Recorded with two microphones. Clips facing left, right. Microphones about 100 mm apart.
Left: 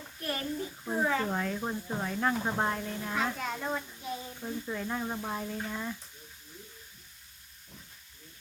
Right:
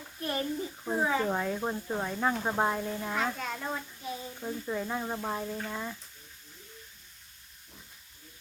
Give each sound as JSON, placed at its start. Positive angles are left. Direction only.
{"t": 0.2, "sound": "a child's voice", "side_deg": -20}
{"t": 0.9, "sound": "speech", "side_deg": -10}
{"t": 3.2, "sound": "a child's voice", "side_deg": 0}